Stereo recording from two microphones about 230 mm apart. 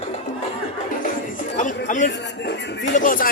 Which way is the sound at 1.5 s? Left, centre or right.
Left.